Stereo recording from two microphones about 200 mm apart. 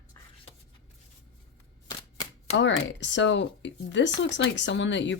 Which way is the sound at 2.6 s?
65° left (ahead or behind).